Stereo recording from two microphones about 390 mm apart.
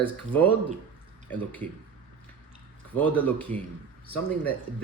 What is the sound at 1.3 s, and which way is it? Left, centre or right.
Speech, centre.